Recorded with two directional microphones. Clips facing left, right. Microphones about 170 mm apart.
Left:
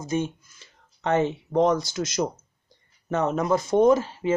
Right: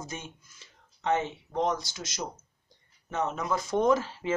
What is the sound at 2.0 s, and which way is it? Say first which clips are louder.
Speech: left 12 dB; 55° left (ahead or behind).